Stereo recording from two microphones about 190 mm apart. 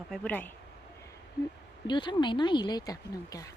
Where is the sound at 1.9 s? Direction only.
25° left (ahead or behind).